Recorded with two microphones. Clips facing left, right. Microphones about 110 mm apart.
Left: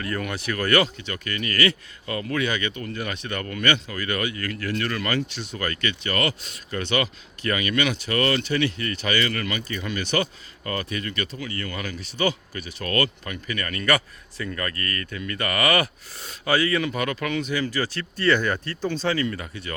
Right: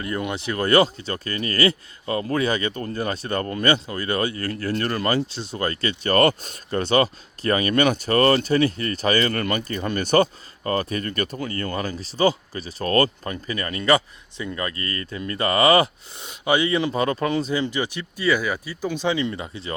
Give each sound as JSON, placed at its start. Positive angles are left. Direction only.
{"t": 0.0, "sound": "speech", "side_deg": -20}